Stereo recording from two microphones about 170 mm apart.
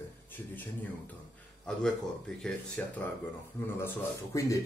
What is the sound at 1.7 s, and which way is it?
Speech, 5° left (ahead or behind).